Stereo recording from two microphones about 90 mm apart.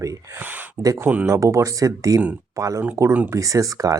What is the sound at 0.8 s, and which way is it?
Speech, 40° right (ahead or behind).